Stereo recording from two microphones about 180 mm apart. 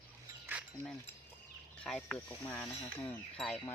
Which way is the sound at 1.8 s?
5° left (ahead or behind).